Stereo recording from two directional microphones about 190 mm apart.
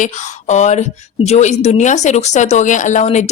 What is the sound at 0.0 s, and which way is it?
A woman's voice, 40° left (ahead or behind).